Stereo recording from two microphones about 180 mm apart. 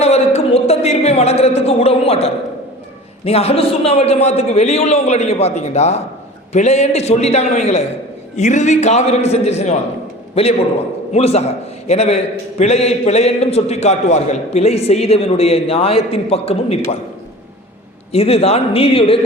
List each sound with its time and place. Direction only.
0.0 s a sound: 35° left (ahead or behind)
3.2 s a man's voice: 35° left (ahead or behind)
11.1 s a man's voice: 35° left (ahead or behind)
18.1 s a man's voice: 35° left (ahead or behind)